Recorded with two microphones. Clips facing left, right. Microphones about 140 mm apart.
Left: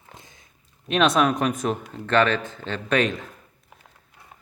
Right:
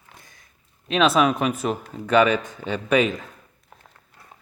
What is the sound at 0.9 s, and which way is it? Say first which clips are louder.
Speech: right 1 dB; centre (ahead or behind).